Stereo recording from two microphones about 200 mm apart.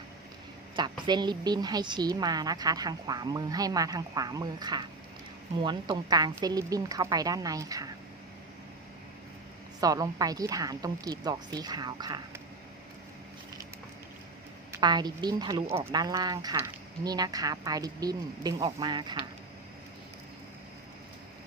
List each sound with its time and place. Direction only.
0.8 s a woman's voice: 20° right (ahead or behind)
9.8 s a woman's voice: 20° right (ahead or behind)
14.7 s a woman's voice: 20° right (ahead or behind)